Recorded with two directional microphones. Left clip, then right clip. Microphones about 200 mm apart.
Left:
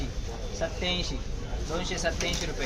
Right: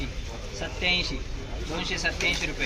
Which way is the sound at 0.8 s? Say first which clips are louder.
Right 5 dB; 15° left (ahead or behind).